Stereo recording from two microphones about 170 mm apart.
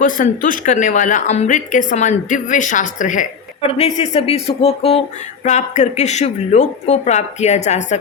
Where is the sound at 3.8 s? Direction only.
35° left (ahead or behind).